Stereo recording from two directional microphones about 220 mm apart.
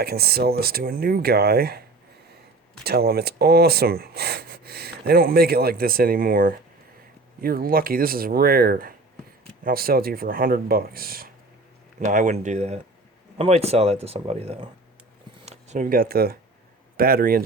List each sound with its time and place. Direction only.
0.0 s speech: 45° right (ahead or behind)
2.8 s speech: 45° right (ahead or behind)